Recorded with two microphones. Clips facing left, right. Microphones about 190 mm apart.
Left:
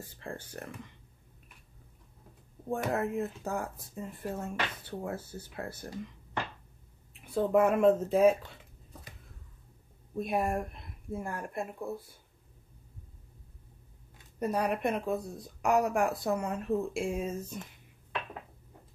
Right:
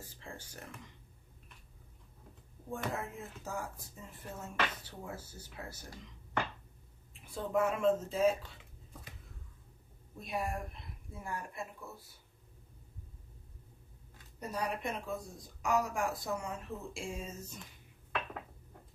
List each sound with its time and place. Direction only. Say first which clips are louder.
0.2 s speech: left 8 dB; 55° left (ahead or behind)
2.7 s speech: left 8 dB; 60° left (ahead or behind)
7.2 s speech: left 7 dB; 60° left (ahead or behind)
10.2 s a woman's voice: left 7 dB; 55° left (ahead or behind)
14.4 s speech: left 8 dB; 60° left (ahead or behind)